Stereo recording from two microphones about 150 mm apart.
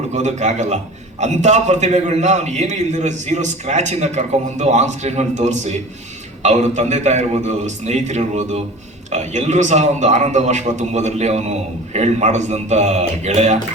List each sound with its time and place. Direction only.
0.1 s a man's voice: 50° right (ahead or behind)